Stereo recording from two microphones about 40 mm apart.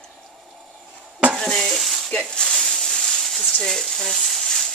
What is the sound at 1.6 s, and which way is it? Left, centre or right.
Stir, centre.